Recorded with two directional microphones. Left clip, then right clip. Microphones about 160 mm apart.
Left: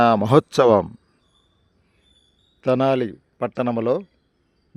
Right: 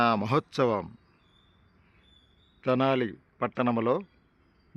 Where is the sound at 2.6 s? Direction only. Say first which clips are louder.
Left 7 dB; 40° left (ahead or behind).